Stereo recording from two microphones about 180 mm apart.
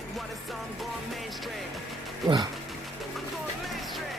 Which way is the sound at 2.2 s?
25° right (ahead or behind).